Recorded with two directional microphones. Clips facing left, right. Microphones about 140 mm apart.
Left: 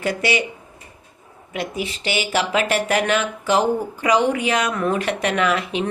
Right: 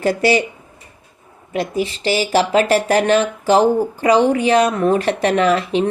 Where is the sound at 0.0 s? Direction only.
35° right (ahead or behind).